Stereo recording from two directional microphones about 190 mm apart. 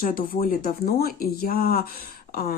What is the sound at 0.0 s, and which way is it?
Speech, 50° left (ahead or behind).